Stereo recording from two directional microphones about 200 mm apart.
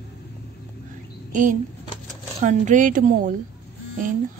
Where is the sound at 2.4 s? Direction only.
40° right (ahead or behind).